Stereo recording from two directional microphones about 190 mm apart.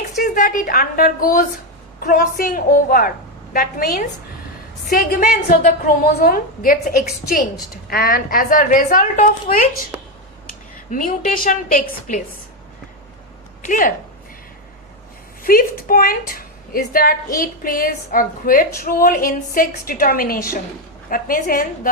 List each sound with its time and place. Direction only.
0.2 s a woman's voice: 45° left (ahead or behind)
10.9 s a woman's voice: 45° left (ahead or behind)
13.6 s speech: 45° left (ahead or behind)
15.4 s a woman's voice: 50° left (ahead or behind)